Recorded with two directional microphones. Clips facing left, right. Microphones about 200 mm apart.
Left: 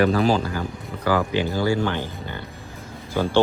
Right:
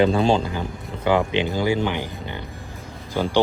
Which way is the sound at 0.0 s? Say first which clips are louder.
Right 1 dB; 25° right (ahead or behind).